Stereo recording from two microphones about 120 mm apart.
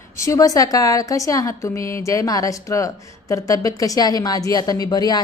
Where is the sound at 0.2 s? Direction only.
25° left (ahead or behind).